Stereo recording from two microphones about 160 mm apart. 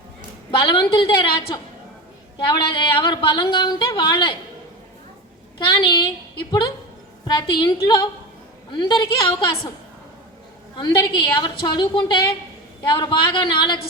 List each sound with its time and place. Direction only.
0.5 s speech: 30° left (ahead or behind)
5.5 s speech: 25° left (ahead or behind)
7.3 s speech: 25° left (ahead or behind)
10.8 s speech: 30° left (ahead or behind)